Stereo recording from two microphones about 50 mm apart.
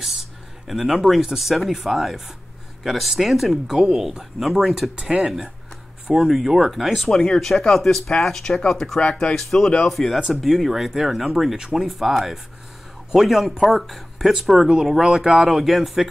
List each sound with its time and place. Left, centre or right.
0.7 s speech: centre
6.0 s speech: centre
9.9 s speech: centre